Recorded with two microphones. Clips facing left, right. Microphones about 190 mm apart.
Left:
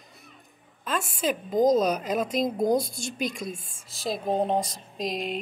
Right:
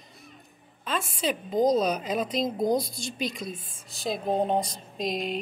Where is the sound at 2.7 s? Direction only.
50° left (ahead or behind).